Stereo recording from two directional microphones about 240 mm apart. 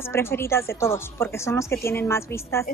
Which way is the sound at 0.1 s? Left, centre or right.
Centre.